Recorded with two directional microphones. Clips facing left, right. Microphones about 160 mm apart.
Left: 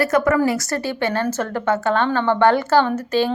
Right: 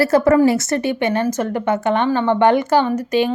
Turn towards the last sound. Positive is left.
turn(degrees=-15)  # may be behind; listen again after turning